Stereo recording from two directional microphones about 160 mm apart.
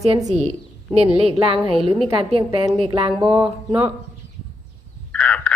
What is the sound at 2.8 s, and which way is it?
Speech, 35° right (ahead or behind).